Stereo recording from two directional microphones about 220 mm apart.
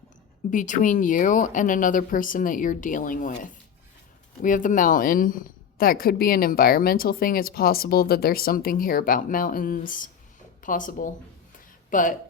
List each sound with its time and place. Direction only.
0.5 s a woman's voice: 35° left (ahead or behind)
4.4 s a woman's voice: 35° left (ahead or behind)